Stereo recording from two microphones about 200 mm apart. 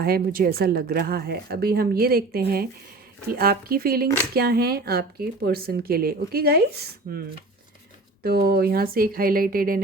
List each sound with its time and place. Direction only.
0.0 s speech: 50° right (ahead or behind)
8.2 s speech: 50° right (ahead or behind)